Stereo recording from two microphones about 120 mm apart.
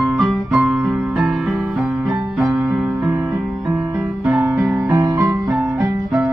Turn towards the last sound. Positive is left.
turn(degrees=-10)  # may be behind; listen again after turning